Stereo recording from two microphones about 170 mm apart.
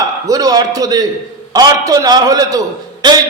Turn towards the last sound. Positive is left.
turn(degrees=-25)  # may be behind; listen again after turning